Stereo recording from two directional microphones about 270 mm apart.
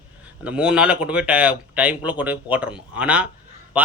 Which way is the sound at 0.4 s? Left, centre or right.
Centre.